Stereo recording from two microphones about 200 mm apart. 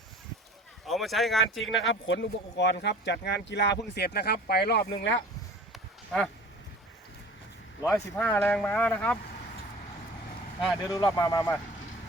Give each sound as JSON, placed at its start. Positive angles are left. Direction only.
{"t": 0.9, "sound": "speech", "side_deg": 0}
{"t": 1.9, "sound": "speech", "side_deg": 60}
{"t": 5.7, "sound": "a sound", "side_deg": 0}
{"t": 7.9, "sound": "speech", "side_deg": 15}
{"t": 10.8, "sound": "speech", "side_deg": 20}